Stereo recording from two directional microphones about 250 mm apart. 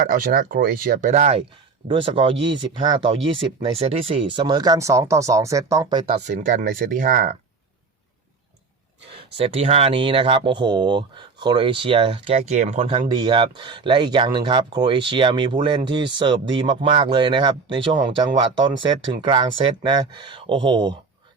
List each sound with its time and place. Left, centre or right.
0.0 s speech: right
9.4 s speech: right